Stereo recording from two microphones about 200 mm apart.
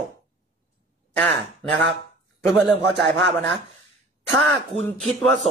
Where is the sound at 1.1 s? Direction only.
5° left (ahead or behind).